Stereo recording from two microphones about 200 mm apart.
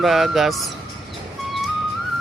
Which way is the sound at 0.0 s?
Centre (ahead or behind).